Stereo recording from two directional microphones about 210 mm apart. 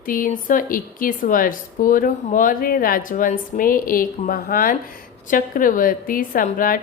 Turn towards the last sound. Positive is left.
turn(degrees=40)  # may be behind; listen again after turning